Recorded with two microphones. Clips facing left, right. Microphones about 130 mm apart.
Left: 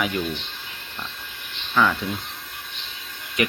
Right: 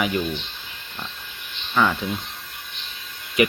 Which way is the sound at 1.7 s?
10° right (ahead or behind).